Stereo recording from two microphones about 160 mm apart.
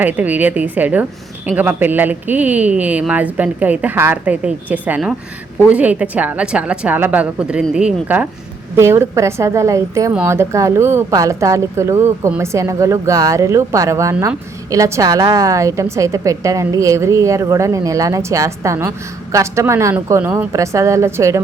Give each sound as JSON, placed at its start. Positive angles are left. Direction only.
{"t": 0.0, "sound": "speech", "side_deg": -10}